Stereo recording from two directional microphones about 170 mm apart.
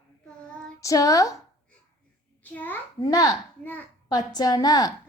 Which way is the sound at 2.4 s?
10° left (ahead or behind).